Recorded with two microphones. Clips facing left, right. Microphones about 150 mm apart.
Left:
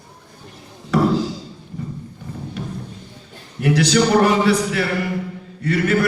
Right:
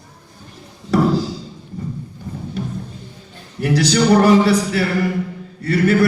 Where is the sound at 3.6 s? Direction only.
35° right (ahead or behind).